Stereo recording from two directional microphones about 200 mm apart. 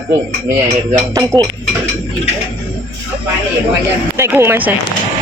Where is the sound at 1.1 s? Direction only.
15° right (ahead or behind).